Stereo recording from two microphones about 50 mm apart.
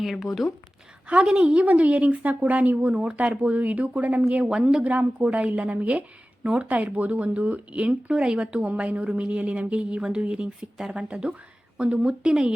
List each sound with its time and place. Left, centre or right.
0.0 s speech: centre
1.0 s a woman's voice: right
4.5 s a woman's voice: centre
4.8 s speech: right